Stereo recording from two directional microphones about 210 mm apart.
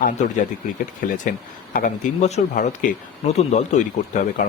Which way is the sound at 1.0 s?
35° left (ahead or behind).